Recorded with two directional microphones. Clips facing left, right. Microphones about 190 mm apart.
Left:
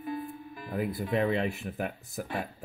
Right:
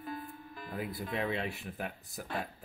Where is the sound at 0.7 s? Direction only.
50° left (ahead or behind).